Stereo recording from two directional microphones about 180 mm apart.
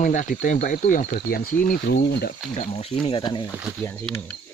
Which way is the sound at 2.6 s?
35° left (ahead or behind).